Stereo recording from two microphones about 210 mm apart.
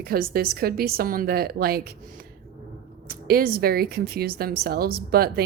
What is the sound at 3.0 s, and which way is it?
Speech, 45° right (ahead or behind).